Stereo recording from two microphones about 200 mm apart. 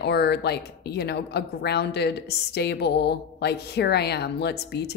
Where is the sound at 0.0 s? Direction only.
55° left (ahead or behind).